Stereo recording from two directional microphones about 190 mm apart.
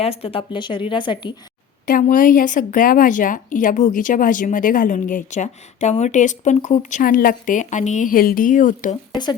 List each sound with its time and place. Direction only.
0.0 s speech: 30° left (ahead or behind)
1.9 s a woman's voice: 45° left (ahead or behind)